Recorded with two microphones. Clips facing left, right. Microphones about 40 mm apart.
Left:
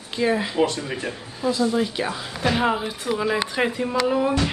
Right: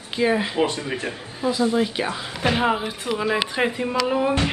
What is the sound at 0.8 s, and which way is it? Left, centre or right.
Speech, centre.